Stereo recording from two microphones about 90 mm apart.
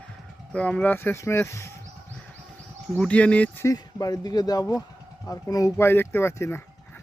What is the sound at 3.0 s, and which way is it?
Speech, 15° left (ahead or behind).